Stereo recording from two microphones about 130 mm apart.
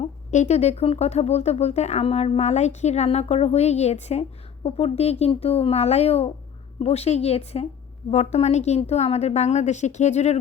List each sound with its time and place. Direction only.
0.0 s speech: 60° left (ahead or behind)